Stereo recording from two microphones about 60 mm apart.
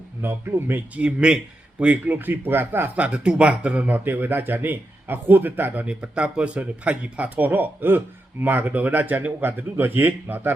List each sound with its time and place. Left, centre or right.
0.2 s speech: right
0.9 s speech: centre; by 2.9 s right
2.9 s speech: centre